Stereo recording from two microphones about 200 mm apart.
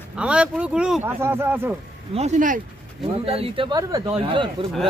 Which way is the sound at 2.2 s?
35° right (ahead or behind).